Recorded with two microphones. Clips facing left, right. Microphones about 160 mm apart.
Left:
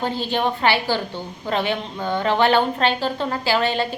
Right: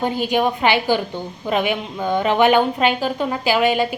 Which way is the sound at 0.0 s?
15° right (ahead or behind).